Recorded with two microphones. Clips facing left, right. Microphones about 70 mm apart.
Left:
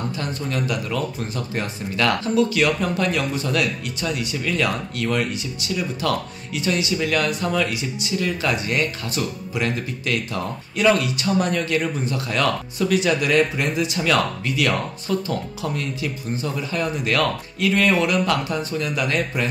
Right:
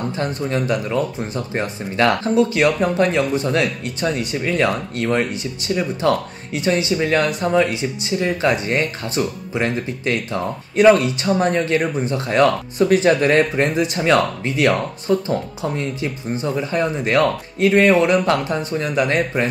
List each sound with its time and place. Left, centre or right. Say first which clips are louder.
0.2 s speech: right 6 dB; right